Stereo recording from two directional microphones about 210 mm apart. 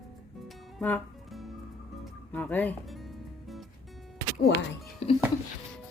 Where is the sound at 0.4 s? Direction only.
5° left (ahead or behind).